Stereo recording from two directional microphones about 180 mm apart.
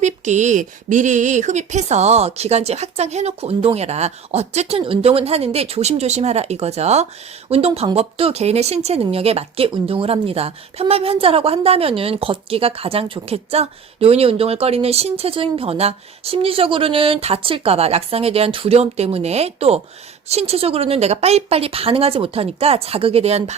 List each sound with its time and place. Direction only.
0.0 s speech: 40° right (ahead or behind)